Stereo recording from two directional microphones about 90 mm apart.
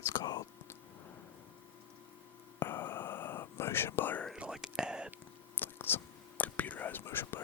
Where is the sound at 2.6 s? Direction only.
25° left (ahead or behind).